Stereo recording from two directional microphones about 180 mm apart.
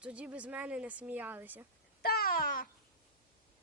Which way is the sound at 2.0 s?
55° left (ahead or behind).